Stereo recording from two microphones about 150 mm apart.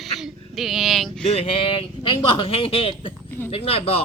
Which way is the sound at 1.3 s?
40° left (ahead or behind).